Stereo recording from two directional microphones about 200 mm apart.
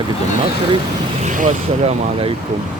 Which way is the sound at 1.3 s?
40° right (ahead or behind).